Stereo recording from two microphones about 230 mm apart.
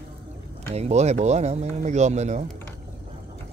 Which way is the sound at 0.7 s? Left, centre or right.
Right.